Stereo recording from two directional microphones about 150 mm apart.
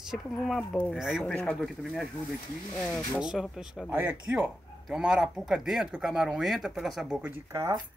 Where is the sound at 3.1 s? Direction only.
5° right (ahead or behind).